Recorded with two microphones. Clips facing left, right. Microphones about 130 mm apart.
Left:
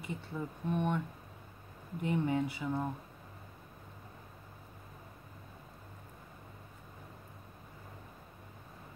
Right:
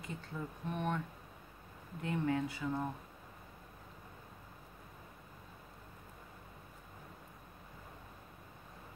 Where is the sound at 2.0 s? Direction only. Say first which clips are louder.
Left 3 dB; 20° left (ahead or behind).